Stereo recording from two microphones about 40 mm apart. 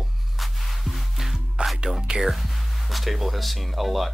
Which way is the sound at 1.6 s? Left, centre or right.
Right.